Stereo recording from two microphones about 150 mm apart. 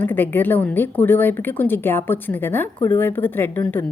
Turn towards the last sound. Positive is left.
turn(degrees=15)  # may be behind; listen again after turning